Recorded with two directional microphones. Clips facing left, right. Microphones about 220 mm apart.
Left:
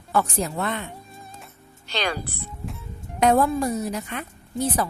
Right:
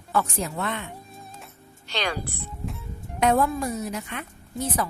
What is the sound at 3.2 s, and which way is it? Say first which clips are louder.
A woman's voice: left 3 dB; 35° left (ahead or behind).